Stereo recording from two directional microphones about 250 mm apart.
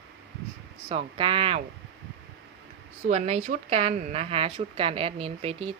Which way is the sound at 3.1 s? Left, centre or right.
Right.